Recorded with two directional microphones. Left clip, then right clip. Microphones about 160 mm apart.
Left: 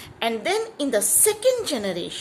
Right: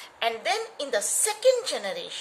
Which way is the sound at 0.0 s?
40° left (ahead or behind).